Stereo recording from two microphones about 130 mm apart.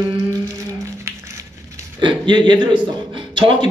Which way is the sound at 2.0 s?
35° right (ahead or behind).